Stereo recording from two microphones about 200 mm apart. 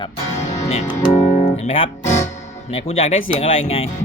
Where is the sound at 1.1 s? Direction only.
35° left (ahead or behind).